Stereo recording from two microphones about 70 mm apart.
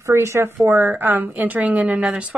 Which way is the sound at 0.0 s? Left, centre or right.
Right.